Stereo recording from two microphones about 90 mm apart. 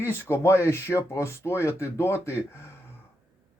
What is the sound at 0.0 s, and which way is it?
Speech, 30° left (ahead or behind).